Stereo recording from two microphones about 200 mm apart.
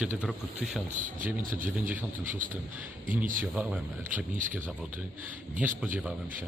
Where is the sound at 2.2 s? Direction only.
40° right (ahead or behind).